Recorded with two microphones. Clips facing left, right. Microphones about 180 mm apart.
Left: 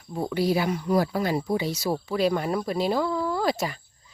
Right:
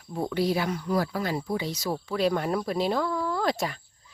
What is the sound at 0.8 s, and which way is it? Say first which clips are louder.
Speech: left 4 dB; 15° left (ahead or behind).